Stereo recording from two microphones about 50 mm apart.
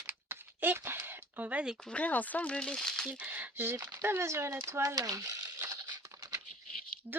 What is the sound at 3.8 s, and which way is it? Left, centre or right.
Speech, right.